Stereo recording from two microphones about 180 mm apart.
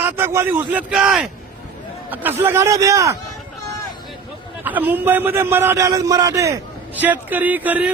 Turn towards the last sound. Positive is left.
turn(degrees=-10)  # may be behind; listen again after turning